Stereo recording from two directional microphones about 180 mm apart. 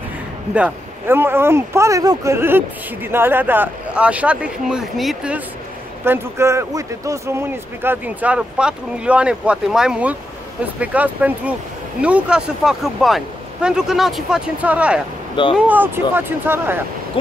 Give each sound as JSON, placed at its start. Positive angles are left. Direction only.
{"t": 0.6, "sound": "speech", "side_deg": -10}
{"t": 6.0, "sound": "speech", "side_deg": -15}